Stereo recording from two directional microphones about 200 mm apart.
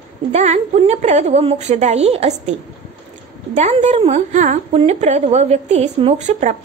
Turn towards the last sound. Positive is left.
turn(degrees=-35)  # may be behind; listen again after turning